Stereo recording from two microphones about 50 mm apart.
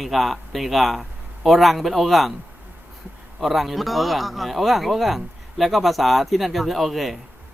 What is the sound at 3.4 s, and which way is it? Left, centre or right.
Speech, centre.